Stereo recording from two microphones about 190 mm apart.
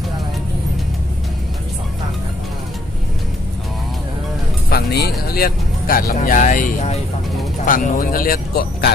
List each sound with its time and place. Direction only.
4.6 s music: 55° left (ahead or behind)
5.3 s speech: 50° left (ahead or behind)